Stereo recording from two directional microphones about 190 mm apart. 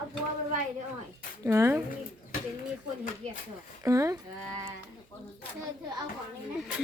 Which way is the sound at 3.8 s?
15° right (ahead or behind).